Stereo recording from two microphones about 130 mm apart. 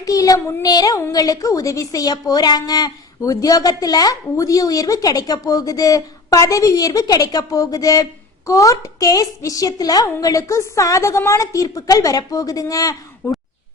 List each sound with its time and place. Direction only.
0.0 s a child's voice: 25° left (ahead or behind)